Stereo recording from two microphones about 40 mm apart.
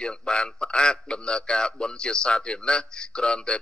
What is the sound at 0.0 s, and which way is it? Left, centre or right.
A man's voice, left.